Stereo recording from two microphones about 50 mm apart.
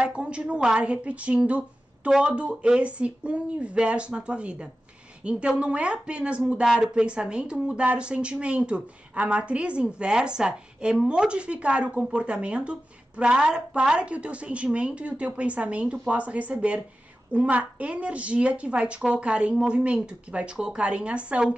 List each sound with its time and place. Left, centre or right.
0.0 s a woman's voice: right
6.6 s speech: centre